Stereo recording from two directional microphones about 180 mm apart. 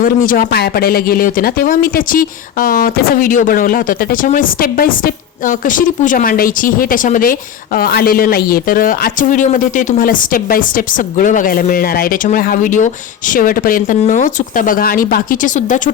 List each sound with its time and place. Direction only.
0.0 s speech: 50° left (ahead or behind)